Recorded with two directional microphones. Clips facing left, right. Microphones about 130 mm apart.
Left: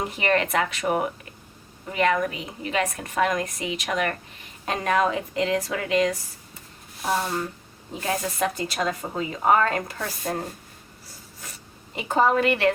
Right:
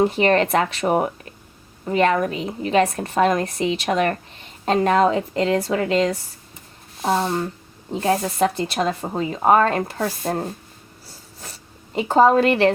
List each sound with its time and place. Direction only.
0.0 s a woman's voice: 30° right (ahead or behind)
11.3 s zipper: 30° right (ahead or behind)